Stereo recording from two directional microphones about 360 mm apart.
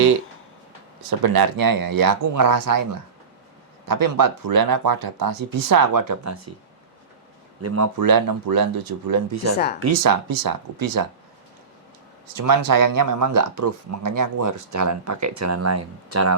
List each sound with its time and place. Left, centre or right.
1.2 s speech: right
3.8 s speech: right
7.9 s speech: right
9.3 s speech: right
10.0 s speech: right
12.3 s speech: right